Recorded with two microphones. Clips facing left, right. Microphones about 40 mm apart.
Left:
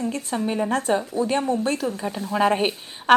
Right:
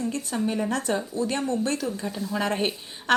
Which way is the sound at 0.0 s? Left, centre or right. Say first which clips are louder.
Left 2 dB; left.